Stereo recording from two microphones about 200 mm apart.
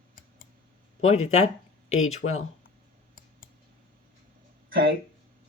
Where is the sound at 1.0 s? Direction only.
35° left (ahead or behind).